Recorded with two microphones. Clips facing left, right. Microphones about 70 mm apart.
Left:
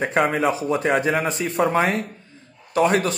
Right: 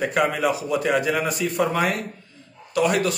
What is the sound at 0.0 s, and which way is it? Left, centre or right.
Speech, left.